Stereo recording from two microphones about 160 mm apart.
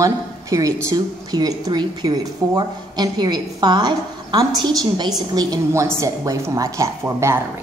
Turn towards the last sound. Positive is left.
turn(degrees=-20)  # may be behind; listen again after turning